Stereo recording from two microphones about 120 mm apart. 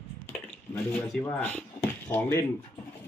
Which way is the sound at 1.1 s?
5° left (ahead or behind).